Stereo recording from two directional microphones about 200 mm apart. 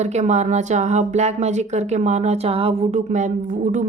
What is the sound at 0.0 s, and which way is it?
Speech, 35° right (ahead or behind).